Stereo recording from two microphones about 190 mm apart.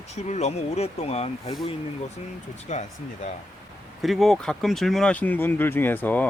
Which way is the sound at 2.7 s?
35° left (ahead or behind).